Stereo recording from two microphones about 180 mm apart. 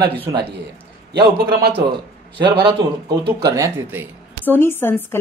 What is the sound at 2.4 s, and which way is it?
Speech, 25° right (ahead or behind).